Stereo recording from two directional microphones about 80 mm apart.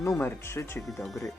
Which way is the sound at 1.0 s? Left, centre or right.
Centre.